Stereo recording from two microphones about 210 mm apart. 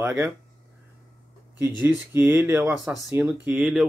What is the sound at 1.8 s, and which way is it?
Speech, 10° right (ahead or behind).